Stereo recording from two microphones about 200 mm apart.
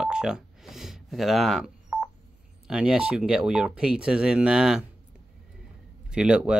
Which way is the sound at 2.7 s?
5° right (ahead or behind).